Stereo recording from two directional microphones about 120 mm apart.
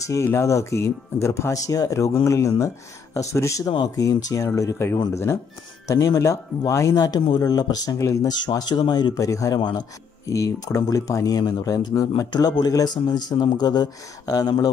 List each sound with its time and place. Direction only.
0.1 s speech: 25° left (ahead or behind)
3.6 s a man's voice: 40° left (ahead or behind)
8.4 s a man's voice: 35° left (ahead or behind)